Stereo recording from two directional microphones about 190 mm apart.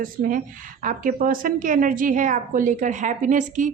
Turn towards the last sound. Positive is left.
turn(degrees=-40)  # may be behind; listen again after turning